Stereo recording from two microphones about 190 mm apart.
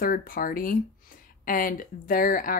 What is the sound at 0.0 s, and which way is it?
Speech, 50° left (ahead or behind).